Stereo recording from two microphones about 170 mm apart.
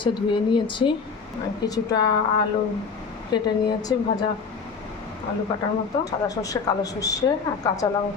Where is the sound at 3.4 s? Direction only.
20° left (ahead or behind).